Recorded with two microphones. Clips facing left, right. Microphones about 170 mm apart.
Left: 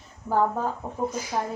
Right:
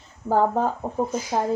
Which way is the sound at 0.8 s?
30° right (ahead or behind).